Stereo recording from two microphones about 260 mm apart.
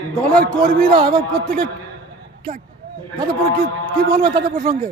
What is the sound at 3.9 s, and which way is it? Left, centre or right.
Speech, centre.